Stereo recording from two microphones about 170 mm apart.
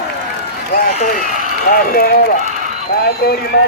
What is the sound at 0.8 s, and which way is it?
Speech, 45° left (ahead or behind).